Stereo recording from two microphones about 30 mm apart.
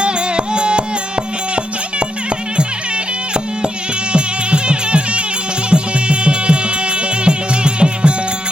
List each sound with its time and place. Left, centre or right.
0.0 s music: right
4.1 s music: right